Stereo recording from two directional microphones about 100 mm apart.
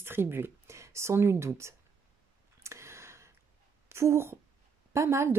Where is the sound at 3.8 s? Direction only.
25° right (ahead or behind).